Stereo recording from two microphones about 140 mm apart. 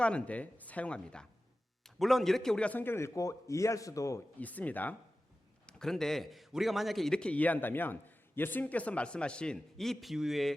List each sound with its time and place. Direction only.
0.0 s a man's voice: 10° left (ahead or behind)
4.4 s a man's voice: 10° left (ahead or behind)